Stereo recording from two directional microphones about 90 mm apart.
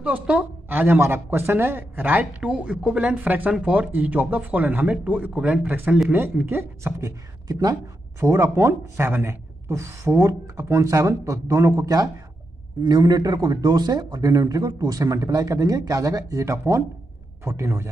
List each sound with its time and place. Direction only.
0.0 s speech: 15° right (ahead or behind)
6.0 s speech: 20° right (ahead or behind)
7.0 s speech: 40° right (ahead or behind)